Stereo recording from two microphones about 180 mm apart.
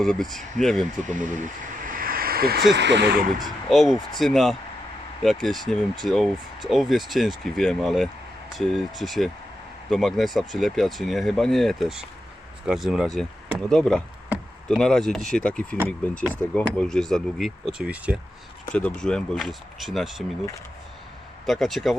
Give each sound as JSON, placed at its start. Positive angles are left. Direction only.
{"t": 0.0, "sound": "speech", "side_deg": 0}
{"t": 1.0, "sound": "speech", "side_deg": -45}
{"t": 3.4, "sound": "speech", "side_deg": 0}
{"t": 18.9, "sound": "speech", "side_deg": 5}
{"t": 21.4, "sound": "speech", "side_deg": 0}